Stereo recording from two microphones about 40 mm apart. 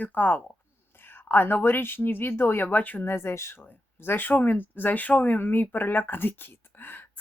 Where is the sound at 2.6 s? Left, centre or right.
Left.